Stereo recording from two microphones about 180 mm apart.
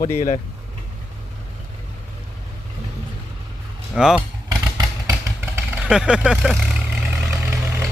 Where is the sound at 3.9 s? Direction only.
5° right (ahead or behind).